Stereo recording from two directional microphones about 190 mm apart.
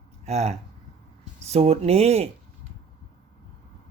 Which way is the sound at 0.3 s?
35° right (ahead or behind).